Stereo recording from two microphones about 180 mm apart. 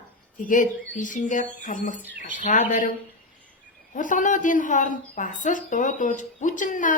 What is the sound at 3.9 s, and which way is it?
Speech, 45° left (ahead or behind).